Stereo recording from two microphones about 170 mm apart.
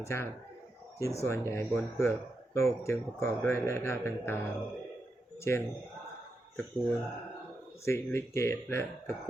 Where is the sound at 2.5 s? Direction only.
15° left (ahead or behind).